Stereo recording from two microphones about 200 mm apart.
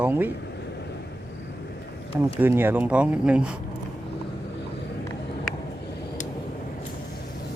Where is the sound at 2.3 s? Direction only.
10° right (ahead or behind).